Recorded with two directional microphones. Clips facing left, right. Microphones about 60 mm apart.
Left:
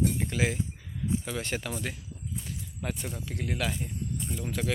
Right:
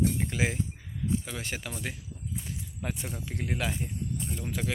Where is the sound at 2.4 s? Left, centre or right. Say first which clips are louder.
Left 1 dB; centre.